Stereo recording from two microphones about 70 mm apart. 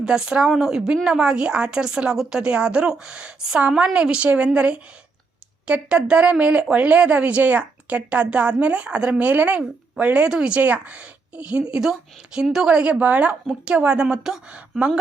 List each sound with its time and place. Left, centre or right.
0.0 s speech: centre